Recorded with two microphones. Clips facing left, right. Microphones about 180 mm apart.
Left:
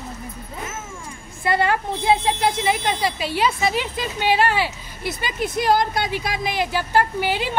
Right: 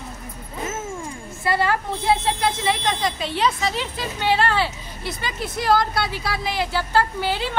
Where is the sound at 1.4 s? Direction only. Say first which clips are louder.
Left 1 dB; 20° left (ahead or behind).